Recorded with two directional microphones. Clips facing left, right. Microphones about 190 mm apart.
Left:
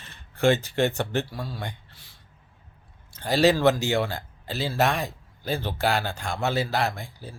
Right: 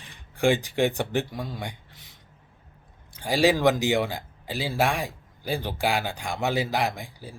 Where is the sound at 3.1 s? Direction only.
10° right (ahead or behind).